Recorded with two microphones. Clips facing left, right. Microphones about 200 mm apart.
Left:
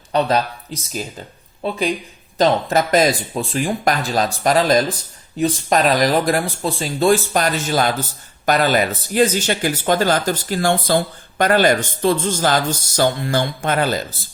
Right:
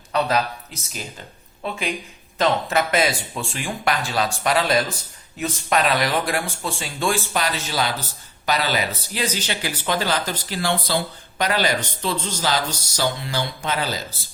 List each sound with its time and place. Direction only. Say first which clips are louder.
0.1 s speech: left 4 dB; 35° left (ahead or behind)
2.4 s speech: left 4 dB; 35° left (ahead or behind); by 14.0 s 55° left (ahead or behind)